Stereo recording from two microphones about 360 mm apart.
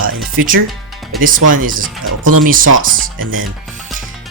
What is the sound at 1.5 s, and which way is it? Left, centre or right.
Speech, right.